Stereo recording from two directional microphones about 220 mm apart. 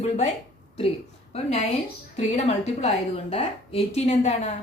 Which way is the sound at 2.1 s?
30° left (ahead or behind).